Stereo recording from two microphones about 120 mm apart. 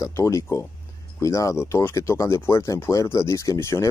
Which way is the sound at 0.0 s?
25° left (ahead or behind).